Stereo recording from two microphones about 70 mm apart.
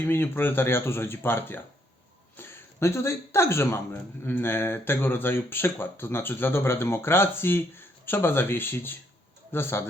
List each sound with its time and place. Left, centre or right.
0.1 s a man's voice: left